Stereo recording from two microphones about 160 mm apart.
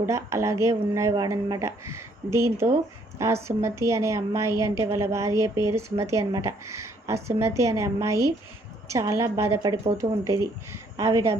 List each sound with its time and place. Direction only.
0.0 s a woman's voice: 20° right (ahead or behind)
10.0 s speech: 40° right (ahead or behind)
10.9 s a woman's voice: 20° right (ahead or behind)